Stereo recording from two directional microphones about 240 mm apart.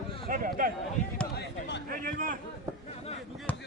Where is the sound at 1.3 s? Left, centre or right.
Left.